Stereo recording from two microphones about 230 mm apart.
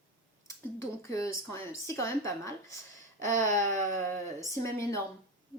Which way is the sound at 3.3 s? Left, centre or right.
Right.